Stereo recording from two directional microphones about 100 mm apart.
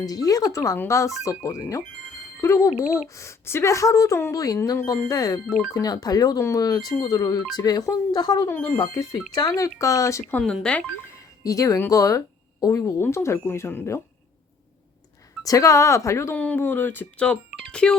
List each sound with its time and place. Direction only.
0.0 s speech: 40° left (ahead or behind)
8.4 s speech: 25° left (ahead or behind)
8.8 s speech: 40° left (ahead or behind)
9.6 s speech: 35° left (ahead or behind)
10.3 s speech: 5° left (ahead or behind)
11.4 s speech: 35° left (ahead or behind)
15.4 s speech: 35° left (ahead or behind)
16.3 s speech: 15° left (ahead or behind)